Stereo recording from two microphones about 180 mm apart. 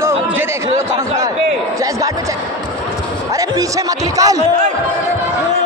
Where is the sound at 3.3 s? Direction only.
20° right (ahead or behind).